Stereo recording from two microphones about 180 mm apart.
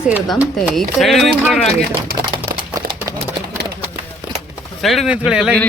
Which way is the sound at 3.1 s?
15° right (ahead or behind).